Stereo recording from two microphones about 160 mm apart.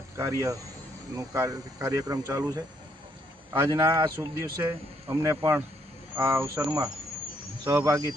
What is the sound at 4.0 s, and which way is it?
Speech, 25° right (ahead or behind).